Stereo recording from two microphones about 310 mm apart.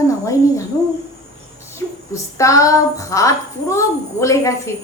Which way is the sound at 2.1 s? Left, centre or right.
Centre.